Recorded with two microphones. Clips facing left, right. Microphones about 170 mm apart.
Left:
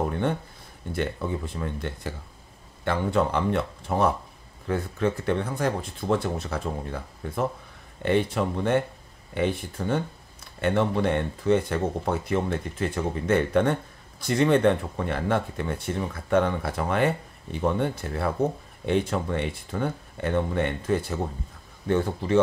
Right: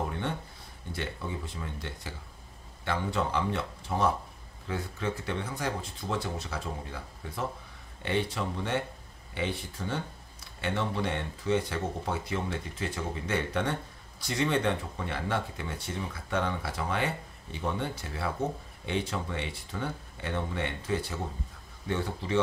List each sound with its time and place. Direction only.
0.9 s speech: 55° left (ahead or behind)